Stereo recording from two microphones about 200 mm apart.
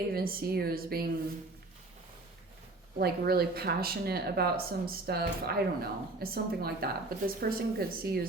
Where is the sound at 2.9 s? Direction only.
50° right (ahead or behind).